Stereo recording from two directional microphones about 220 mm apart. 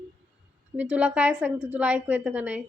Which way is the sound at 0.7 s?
5° right (ahead or behind).